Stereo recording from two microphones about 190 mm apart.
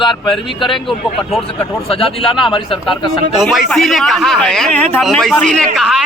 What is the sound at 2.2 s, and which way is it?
Speech, 30° left (ahead or behind).